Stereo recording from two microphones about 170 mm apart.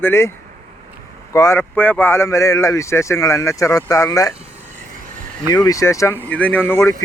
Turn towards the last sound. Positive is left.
turn(degrees=15)  # may be behind; listen again after turning